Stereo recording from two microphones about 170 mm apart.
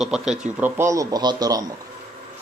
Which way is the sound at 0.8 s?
20° right (ahead or behind).